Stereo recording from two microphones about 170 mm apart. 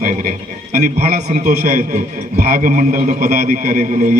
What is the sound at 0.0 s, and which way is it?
A man's voice, 55° right (ahead or behind).